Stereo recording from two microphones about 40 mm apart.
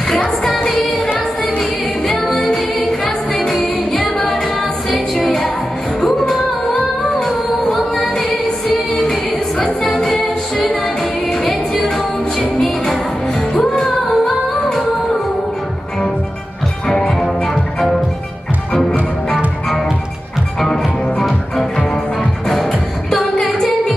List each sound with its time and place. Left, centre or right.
0.5 s music: centre
1.0 s music: left
1.6 s music: centre
12.5 s music: centre
16.8 s music: centre
18.7 s music: left
20.6 s music: centre